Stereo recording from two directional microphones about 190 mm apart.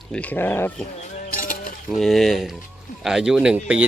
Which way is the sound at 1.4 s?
45° left (ahead or behind).